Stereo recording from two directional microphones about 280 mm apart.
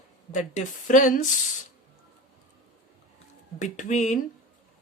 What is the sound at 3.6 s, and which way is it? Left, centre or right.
Speech, left.